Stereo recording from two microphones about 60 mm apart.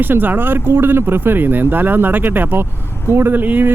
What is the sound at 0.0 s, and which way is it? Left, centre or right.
Speech, right.